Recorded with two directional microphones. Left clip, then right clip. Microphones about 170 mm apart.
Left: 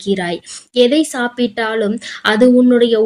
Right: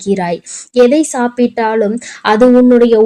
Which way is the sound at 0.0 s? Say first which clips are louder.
Right 3 dB; 25° right (ahead or behind).